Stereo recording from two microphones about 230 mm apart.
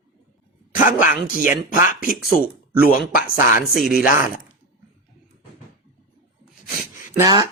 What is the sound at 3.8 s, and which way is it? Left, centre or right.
Speech, left.